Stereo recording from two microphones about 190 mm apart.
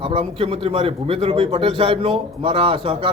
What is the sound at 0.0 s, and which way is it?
A man's voice, 25° right (ahead or behind).